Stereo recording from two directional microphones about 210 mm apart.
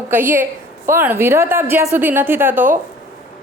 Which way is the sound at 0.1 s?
10° right (ahead or behind).